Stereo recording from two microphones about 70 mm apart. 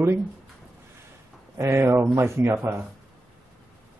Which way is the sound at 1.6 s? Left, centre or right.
Right.